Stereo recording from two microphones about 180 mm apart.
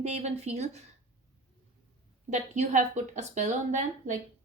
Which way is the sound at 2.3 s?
40° right (ahead or behind).